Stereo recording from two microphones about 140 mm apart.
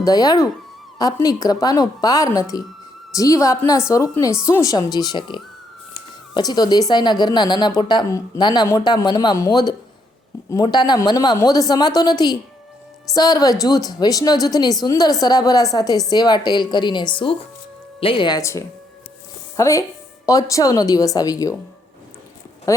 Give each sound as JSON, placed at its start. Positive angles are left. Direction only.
{"t": 0.0, "sound": "a woman's voice", "side_deg": 25}
{"t": 18.3, "sound": "a woman's voice", "side_deg": 20}